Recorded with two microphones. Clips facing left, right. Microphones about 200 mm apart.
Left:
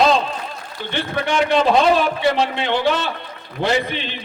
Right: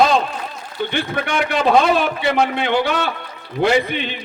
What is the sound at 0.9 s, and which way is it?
A man's voice, 55° right (ahead or behind).